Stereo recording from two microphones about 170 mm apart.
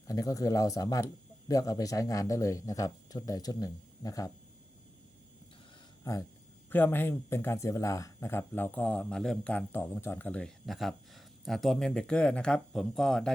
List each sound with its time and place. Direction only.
0.1 s speech: 20° left (ahead or behind)
6.7 s speech: 10° left (ahead or behind)